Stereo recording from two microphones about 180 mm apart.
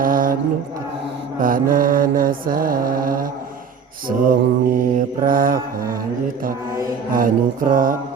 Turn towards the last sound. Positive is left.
turn(degrees=-50)  # may be behind; listen again after turning